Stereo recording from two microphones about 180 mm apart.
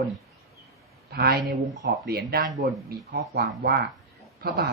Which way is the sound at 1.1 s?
60° right (ahead or behind).